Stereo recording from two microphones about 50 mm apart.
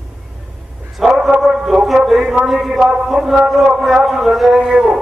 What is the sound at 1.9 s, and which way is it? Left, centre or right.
A man's voice, centre.